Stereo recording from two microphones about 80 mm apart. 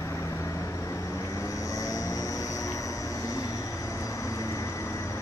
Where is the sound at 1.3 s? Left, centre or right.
Left.